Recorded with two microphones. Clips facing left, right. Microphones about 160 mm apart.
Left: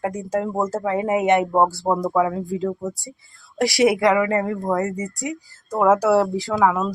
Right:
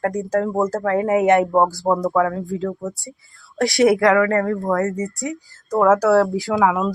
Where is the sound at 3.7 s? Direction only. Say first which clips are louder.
Right 2 dB; centre (ahead or behind).